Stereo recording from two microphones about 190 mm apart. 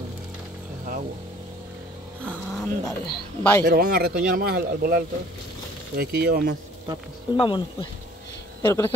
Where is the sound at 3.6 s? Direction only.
55° right (ahead or behind).